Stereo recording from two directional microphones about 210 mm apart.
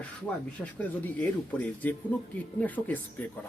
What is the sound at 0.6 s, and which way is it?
A man's voice, 10° left (ahead or behind).